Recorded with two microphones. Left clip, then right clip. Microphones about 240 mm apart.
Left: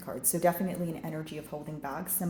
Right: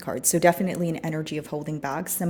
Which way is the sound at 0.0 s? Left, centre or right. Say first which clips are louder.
Right 8 dB; right.